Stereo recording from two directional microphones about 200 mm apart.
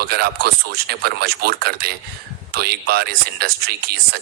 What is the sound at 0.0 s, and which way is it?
Speech, 50° right (ahead or behind).